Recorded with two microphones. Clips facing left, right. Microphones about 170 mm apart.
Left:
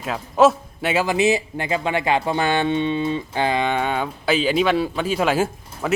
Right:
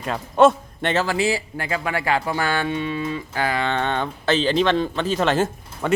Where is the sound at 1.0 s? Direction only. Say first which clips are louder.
Left 3 dB; 20° left (ahead or behind).